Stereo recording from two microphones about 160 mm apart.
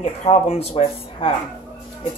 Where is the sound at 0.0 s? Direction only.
40° left (ahead or behind).